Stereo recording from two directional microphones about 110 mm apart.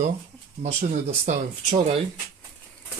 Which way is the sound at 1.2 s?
90° right.